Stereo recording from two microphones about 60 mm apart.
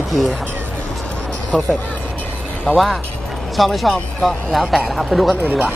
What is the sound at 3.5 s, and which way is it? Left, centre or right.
Speech, centre.